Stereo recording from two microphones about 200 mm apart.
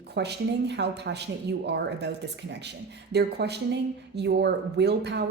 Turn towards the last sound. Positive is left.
turn(degrees=-55)  # may be behind; listen again after turning